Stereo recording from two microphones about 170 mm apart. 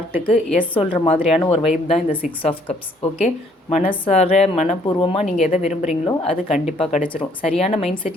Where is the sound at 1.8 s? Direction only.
40° left (ahead or behind).